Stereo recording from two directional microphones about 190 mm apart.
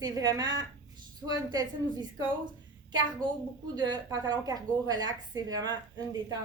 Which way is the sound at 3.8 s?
20° right (ahead or behind).